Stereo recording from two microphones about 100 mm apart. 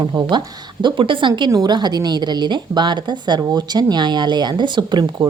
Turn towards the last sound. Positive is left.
turn(degrees=-45)  # may be behind; listen again after turning